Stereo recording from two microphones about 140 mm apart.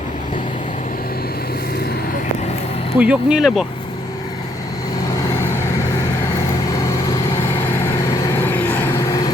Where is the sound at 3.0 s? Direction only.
10° right (ahead or behind).